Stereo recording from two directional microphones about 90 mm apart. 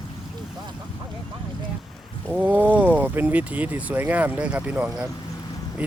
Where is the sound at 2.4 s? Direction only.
20° right (ahead or behind).